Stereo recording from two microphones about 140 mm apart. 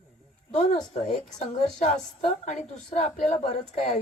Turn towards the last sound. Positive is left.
turn(degrees=55)  # may be behind; listen again after turning